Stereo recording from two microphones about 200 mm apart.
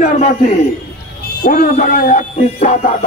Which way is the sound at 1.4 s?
40° left (ahead or behind).